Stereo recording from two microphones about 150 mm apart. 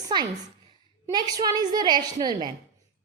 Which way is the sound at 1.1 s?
25° right (ahead or behind).